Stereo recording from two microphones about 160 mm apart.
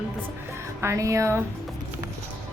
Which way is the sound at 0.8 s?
20° right (ahead or behind).